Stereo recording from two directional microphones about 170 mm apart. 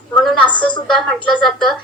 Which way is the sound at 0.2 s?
Centre (ahead or behind).